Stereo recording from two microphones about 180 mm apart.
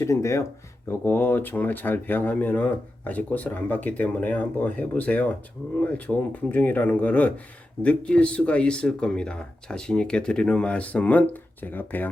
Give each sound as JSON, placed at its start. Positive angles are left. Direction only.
{"t": 0.0, "sound": "speech", "side_deg": 15}